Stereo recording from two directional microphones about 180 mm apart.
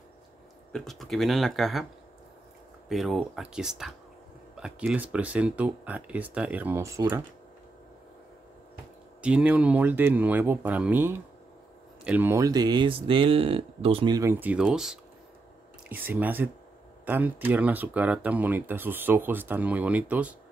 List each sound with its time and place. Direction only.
0.7 s speech: centre (ahead or behind)
2.9 s speech: centre (ahead or behind)
9.2 s speech: 5° right (ahead or behind)